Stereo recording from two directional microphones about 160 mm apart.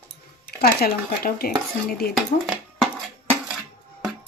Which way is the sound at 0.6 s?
70° left (ahead or behind).